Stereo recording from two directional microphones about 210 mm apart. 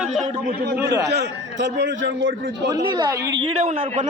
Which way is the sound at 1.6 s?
60° right (ahead or behind).